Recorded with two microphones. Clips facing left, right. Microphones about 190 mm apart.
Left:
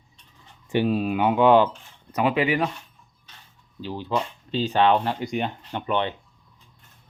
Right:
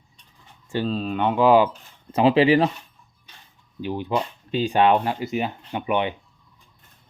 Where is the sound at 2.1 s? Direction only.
30° right (ahead or behind).